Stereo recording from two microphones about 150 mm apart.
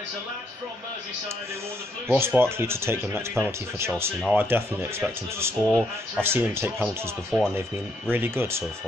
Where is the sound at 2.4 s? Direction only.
15° right (ahead or behind).